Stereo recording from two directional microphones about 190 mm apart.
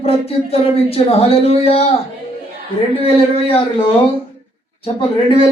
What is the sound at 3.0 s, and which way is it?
Speech, 30° left (ahead or behind).